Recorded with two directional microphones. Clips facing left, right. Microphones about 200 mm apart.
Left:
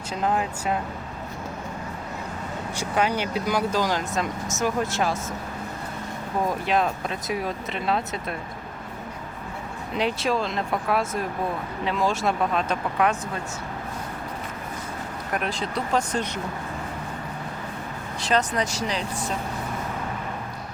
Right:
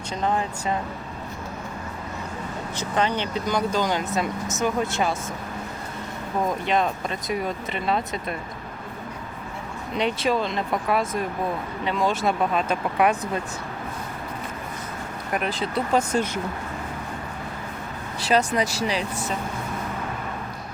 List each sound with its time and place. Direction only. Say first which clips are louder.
0.2 s speech: even; 5° left (ahead or behind)
2.7 s speech: even; 10° left (ahead or behind)
6.7 s speech: even; centre (ahead or behind)
9.9 s speech: right 1 dB; centre (ahead or behind)
15.3 s speech: right 2 dB; centre (ahead or behind)
18.2 s speech: right 2 dB; 5° right (ahead or behind)